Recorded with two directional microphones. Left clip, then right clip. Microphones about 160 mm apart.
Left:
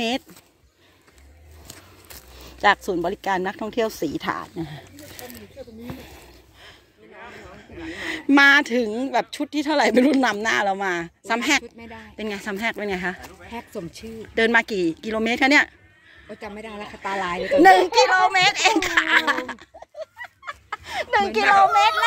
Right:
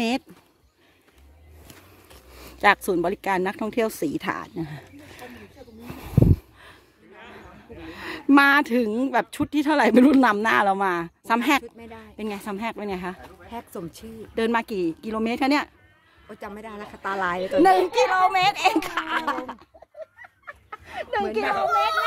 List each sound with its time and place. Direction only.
2.3 s speech: 40° right (ahead or behind)
5.9 s a sound: 60° right (ahead or behind)
7.8 s a woman's voice: 30° right (ahead or behind)
11.8 s speech: 20° right (ahead or behind)
13.5 s speech: 25° right (ahead or behind)
14.2 s a child's voice: 10° right (ahead or behind)